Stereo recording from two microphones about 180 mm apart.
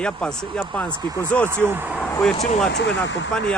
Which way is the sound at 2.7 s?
80° left.